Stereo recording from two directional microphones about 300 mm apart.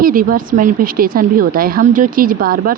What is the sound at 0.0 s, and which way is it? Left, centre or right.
Speech, right.